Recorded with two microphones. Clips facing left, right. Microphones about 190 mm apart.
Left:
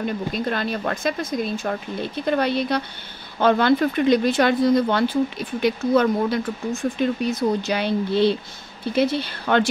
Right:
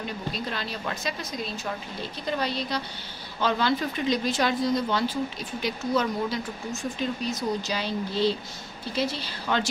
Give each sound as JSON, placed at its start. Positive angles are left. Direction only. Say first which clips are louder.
{"t": 0.0, "sound": "speech", "louder": "left 8 dB", "side_deg": 55}